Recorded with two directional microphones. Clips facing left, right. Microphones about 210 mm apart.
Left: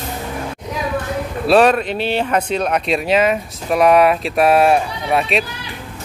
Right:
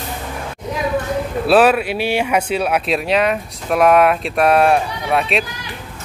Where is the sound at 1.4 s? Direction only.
5° right (ahead or behind).